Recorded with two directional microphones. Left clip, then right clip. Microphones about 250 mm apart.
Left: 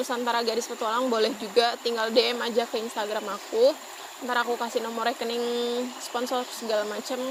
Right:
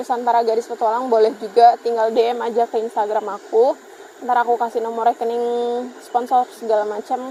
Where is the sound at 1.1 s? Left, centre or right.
Left.